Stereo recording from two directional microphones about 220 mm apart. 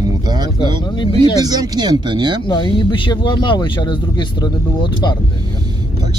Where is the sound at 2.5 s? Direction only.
20° left (ahead or behind).